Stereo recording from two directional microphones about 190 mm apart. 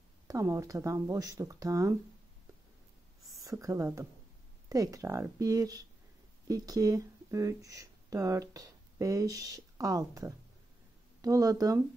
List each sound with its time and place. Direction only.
0.3 s speech: 15° right (ahead or behind)
3.4 s speech: 15° right (ahead or behind)